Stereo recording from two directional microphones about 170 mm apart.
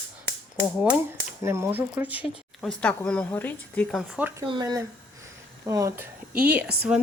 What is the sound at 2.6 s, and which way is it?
Speech, 5° left (ahead or behind).